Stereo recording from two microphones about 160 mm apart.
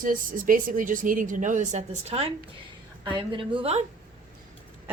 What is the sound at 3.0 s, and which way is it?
Speech, 30° right (ahead or behind).